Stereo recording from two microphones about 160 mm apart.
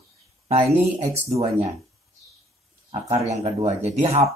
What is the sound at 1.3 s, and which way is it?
Speech, 40° right (ahead or behind).